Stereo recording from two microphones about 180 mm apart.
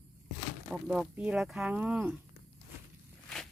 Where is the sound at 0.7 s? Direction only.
5° right (ahead or behind).